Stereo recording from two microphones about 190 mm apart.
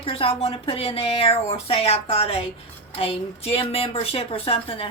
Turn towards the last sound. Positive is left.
turn(degrees=30)  # may be behind; listen again after turning